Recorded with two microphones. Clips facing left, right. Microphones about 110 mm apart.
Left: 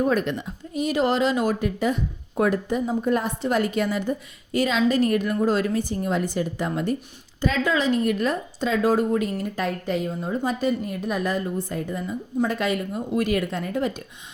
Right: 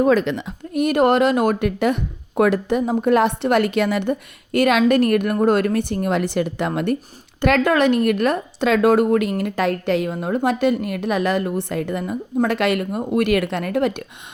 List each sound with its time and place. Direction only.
0.0 s speech: 90° right; by 14.0 s 70° right (ahead or behind)